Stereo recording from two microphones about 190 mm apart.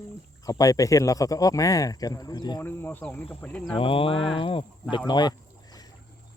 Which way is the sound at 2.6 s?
10° left (ahead or behind).